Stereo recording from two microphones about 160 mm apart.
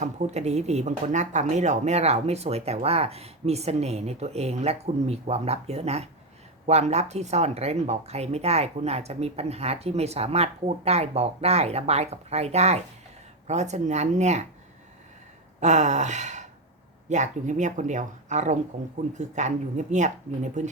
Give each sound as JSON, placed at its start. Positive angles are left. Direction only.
{"t": 0.0, "sound": "speech", "side_deg": -45}
{"t": 15.6, "sound": "speech", "side_deg": -45}